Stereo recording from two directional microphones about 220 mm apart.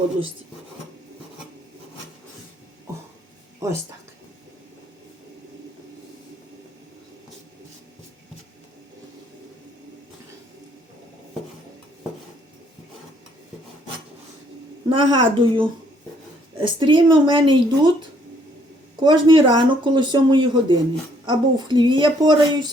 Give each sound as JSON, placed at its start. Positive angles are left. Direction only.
{"t": 2.9, "sound": "a sound", "side_deg": -15}
{"t": 3.6, "sound": "a woman's voice", "side_deg": -15}
{"t": 14.8, "sound": "speech", "side_deg": -20}
{"t": 19.0, "sound": "speech", "side_deg": -20}